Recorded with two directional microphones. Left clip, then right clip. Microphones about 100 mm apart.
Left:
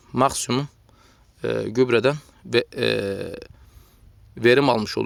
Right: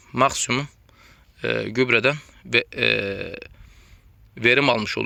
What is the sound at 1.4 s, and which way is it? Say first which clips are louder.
Speech: left 1 dB; 40° left (ahead or behind).